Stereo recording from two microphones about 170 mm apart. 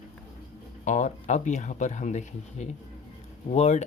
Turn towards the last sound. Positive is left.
turn(degrees=40)  # may be behind; listen again after turning